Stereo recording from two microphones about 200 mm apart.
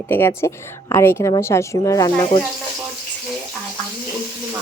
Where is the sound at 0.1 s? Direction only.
15° left (ahead or behind).